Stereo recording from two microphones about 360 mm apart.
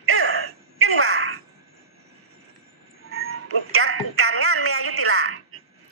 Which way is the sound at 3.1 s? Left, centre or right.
Right.